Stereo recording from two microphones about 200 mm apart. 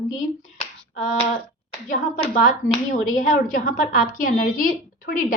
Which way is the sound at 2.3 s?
40° left (ahead or behind).